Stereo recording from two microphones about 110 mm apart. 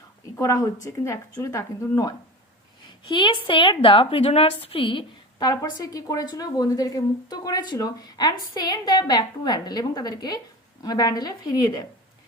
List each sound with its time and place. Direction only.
0.3 s speech: 30° left (ahead or behind)
3.1 s a woman's voice: 50° left (ahead or behind)
5.5 s a woman's voice: 35° left (ahead or behind)